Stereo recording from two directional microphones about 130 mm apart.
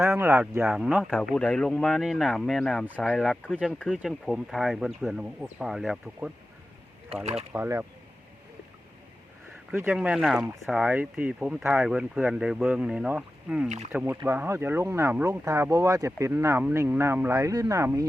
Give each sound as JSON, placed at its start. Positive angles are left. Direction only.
{"t": 0.0, "sound": "speech", "side_deg": -20}
{"t": 0.7, "sound": "speech", "side_deg": -5}
{"t": 1.1, "sound": "speech", "side_deg": 5}
{"t": 7.5, "sound": "speech", "side_deg": -15}
{"t": 9.7, "sound": "speech", "side_deg": -15}